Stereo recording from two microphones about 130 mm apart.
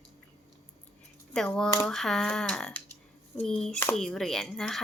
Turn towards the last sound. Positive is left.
turn(degrees=0)  # may be behind; listen again after turning